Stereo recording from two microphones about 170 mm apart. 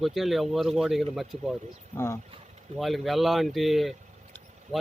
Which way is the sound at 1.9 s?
15° left (ahead or behind).